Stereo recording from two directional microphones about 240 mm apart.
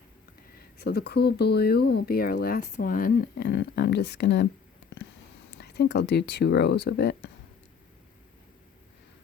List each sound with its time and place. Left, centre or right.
0.8 s speech: left
5.5 s speech: left